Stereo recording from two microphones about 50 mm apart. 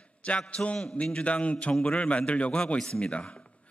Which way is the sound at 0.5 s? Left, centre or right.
Left.